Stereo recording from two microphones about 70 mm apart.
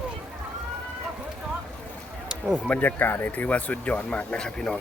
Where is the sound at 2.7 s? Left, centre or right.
Left.